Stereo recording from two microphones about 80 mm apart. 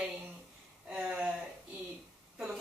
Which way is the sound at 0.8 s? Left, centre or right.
Centre.